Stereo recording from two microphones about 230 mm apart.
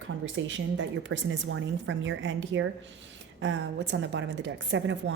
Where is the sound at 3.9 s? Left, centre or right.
Right.